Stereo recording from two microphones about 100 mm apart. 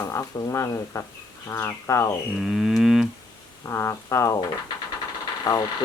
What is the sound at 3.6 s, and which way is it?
Speech, 30° left (ahead or behind).